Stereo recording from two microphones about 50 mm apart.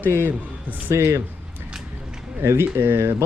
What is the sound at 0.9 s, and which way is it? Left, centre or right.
Speech, right.